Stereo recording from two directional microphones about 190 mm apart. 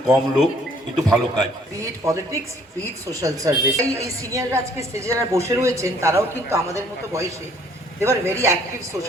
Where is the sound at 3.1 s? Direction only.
15° right (ahead or behind).